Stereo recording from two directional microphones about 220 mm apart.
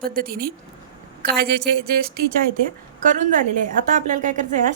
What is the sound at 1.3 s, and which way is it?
Speech, 45° right (ahead or behind).